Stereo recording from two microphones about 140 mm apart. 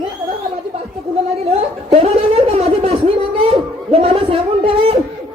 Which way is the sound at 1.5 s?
45° right (ahead or behind).